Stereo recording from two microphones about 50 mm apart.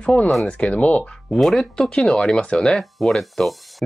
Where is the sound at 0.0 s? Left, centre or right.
Left.